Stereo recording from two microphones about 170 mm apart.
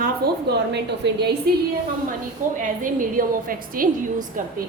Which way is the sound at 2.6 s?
50° right (ahead or behind).